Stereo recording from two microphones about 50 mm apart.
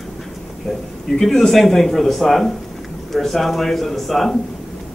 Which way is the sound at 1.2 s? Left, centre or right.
Centre.